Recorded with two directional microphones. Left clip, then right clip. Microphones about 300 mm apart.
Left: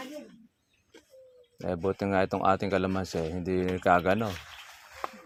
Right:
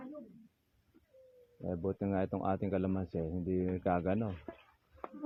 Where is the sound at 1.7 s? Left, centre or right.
Centre.